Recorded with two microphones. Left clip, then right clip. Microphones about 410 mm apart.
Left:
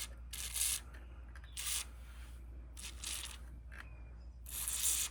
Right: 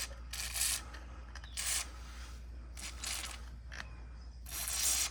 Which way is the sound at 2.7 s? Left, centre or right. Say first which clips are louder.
Right 4 dB; centre.